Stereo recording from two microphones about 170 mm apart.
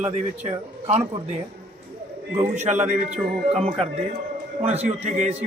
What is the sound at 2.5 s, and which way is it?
Speech, 45° right (ahead or behind).